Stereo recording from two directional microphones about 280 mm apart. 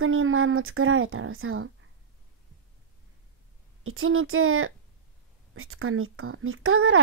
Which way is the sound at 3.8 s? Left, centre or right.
Right.